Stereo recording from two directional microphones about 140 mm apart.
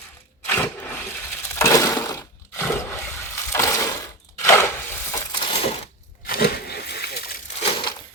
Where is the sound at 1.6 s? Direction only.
20° left (ahead or behind).